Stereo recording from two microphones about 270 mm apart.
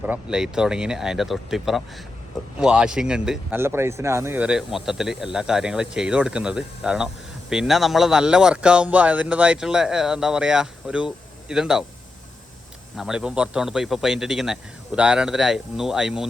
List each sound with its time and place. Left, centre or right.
0.0 s a man's voice: centre
13.0 s a man's voice: centre